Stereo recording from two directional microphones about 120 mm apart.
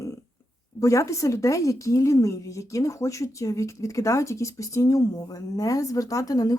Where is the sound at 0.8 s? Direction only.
25° left (ahead or behind).